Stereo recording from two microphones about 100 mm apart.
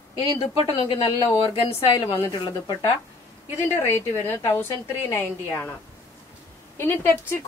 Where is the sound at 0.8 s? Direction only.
65° left (ahead or behind).